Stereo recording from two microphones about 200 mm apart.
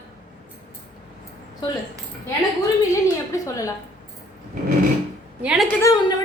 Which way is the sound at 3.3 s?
15° left (ahead or behind).